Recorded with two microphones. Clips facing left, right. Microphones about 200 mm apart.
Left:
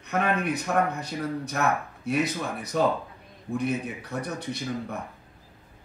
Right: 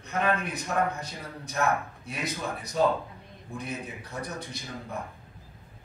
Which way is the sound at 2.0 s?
60° left (ahead or behind).